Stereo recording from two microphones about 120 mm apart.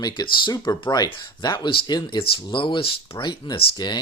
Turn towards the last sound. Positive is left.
turn(degrees=35)  # may be behind; listen again after turning